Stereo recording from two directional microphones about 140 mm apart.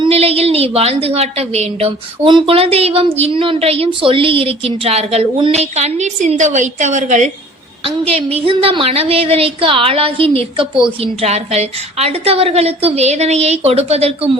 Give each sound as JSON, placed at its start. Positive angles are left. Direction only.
{"t": 0.0, "sound": "a woman's voice", "side_deg": -45}
{"t": 7.9, "sound": "a woman's voice", "side_deg": -45}